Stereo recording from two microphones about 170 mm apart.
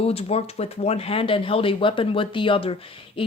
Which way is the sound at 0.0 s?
35° left (ahead or behind).